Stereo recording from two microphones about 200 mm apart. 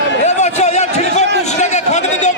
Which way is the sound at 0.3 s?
35° left (ahead or behind).